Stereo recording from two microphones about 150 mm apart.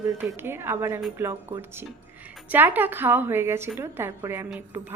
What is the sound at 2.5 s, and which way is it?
A woman's voice, 15° right (ahead or behind).